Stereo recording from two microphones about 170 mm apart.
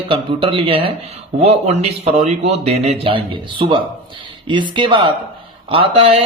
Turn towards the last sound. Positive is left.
turn(degrees=-35)  # may be behind; listen again after turning